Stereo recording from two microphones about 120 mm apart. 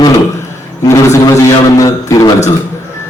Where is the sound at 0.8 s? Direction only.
25° left (ahead or behind).